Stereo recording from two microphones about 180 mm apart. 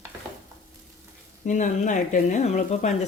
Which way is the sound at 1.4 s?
45° left (ahead or behind).